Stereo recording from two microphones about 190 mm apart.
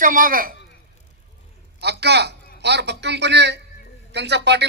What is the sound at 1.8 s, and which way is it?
Speech, 60° right (ahead or behind).